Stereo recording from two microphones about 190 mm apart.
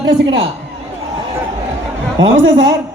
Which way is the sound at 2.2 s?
75° right (ahead or behind).